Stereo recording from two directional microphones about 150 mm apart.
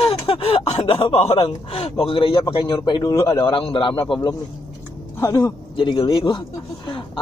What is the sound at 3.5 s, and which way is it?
A man's voice, 35° left (ahead or behind).